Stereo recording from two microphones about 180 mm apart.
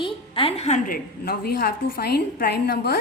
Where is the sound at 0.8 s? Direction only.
55° left (ahead or behind).